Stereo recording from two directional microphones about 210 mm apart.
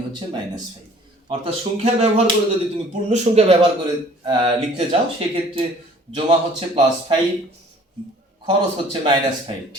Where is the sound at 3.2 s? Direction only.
30° right (ahead or behind).